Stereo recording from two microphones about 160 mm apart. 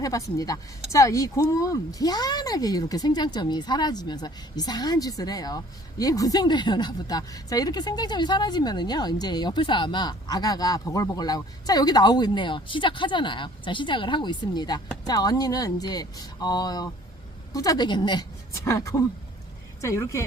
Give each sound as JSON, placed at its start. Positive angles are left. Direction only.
{"t": 0.0, "sound": "speech", "side_deg": 20}